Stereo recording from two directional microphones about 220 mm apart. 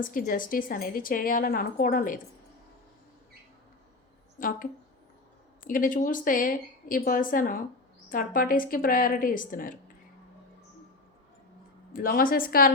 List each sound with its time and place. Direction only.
0.0 s a woman's voice: 40° left (ahead or behind)
4.4 s a woman's voice: 40° left (ahead or behind)
11.9 s a woman's voice: 40° left (ahead or behind)